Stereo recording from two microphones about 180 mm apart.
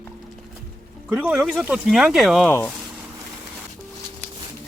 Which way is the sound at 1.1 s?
5° right (ahead or behind).